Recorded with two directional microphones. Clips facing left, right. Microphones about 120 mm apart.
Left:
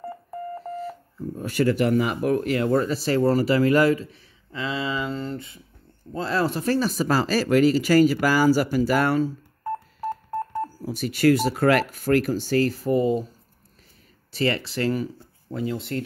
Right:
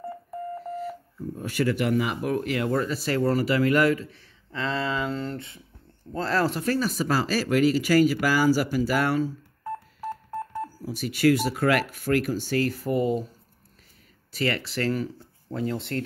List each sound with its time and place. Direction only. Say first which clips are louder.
1.4 s speech: left 4 dB; 40° left (ahead or behind); by 4.2 s 25° left (ahead or behind)
4.5 s speech: even; 5° left (ahead or behind)
6.1 s speech: left 1 dB; 15° left (ahead or behind)
6.7 s speech: left 3 dB; 35° left (ahead or behind)
14.3 s speech: left 3 dB; 25° left (ahead or behind)
15.5 s speech: left 1 dB; 5° left (ahead or behind)